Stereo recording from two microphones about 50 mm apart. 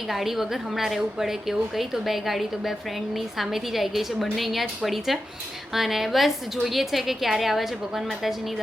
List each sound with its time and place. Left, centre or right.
0.1 s a woman's voice: centre